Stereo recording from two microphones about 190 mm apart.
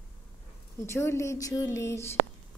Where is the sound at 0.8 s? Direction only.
15° left (ahead or behind).